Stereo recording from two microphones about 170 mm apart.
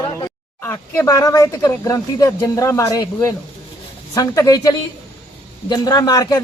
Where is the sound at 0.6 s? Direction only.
15° left (ahead or behind).